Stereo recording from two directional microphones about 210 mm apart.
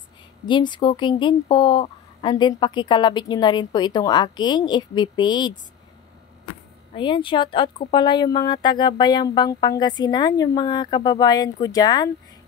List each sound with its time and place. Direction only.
0.5 s speech: 20° left (ahead or behind)
7.0 s speech: 25° left (ahead or behind)